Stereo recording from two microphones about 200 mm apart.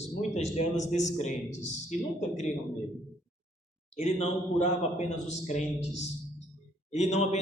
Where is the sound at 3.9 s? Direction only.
35° left (ahead or behind).